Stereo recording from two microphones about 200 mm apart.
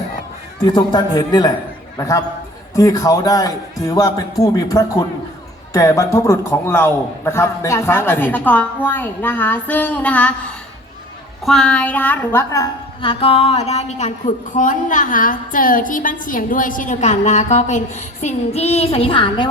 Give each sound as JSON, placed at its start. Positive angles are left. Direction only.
{"t": 0.6, "sound": "a man's voice", "side_deg": 20}
{"t": 11.4, "sound": "a woman's voice", "side_deg": 5}